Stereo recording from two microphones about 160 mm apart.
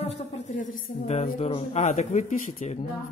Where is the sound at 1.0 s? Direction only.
45° left (ahead or behind).